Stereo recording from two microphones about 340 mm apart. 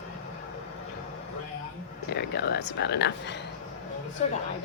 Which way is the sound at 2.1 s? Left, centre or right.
Left.